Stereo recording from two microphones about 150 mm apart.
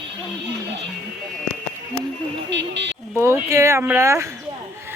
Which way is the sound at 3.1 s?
20° right (ahead or behind).